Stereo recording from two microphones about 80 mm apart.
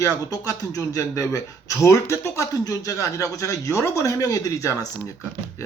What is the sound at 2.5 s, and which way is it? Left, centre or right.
Speech, left.